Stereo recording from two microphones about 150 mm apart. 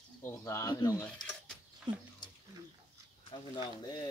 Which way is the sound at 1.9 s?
30° right (ahead or behind).